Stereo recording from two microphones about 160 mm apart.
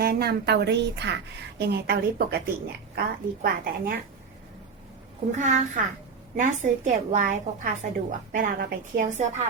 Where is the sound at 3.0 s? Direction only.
65° right (ahead or behind).